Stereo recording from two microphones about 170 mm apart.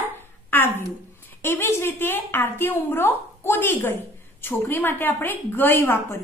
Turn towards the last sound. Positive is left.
turn(degrees=15)  # may be behind; listen again after turning